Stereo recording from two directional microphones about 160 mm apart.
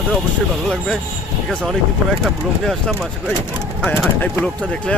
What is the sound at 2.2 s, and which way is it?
Speech, centre (ahead or behind).